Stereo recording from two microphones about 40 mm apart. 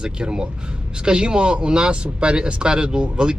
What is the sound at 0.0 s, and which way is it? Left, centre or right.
Speech, right.